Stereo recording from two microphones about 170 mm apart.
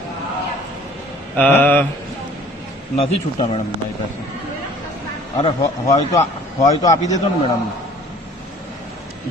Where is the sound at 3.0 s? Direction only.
35° left (ahead or behind).